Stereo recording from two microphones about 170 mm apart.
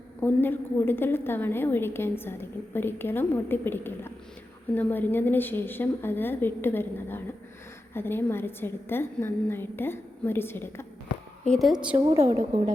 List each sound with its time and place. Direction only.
0.2 s a woman's voice: 10° left (ahead or behind)
11.4 s a woman's voice: centre (ahead or behind)
11.9 s a woman's voice: 20° right (ahead or behind)